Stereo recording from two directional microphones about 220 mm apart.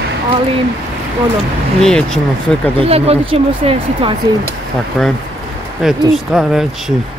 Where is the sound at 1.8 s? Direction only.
5° left (ahead or behind).